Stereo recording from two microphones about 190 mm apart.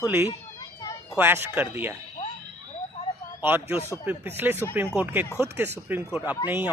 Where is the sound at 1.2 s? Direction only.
10° right (ahead or behind).